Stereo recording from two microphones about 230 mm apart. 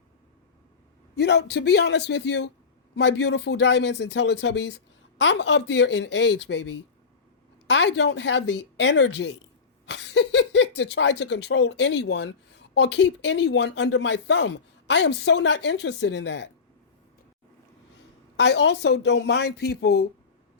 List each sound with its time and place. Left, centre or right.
1.1 s speech: left
18.3 s speech: left